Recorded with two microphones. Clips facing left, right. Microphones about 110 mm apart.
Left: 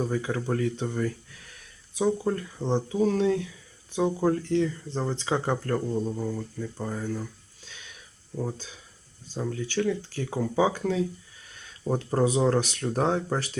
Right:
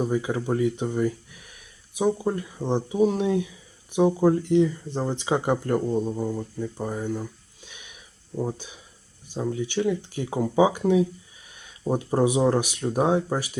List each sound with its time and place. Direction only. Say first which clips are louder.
0.0 s speech: right 3 dB; 15° right (ahead or behind)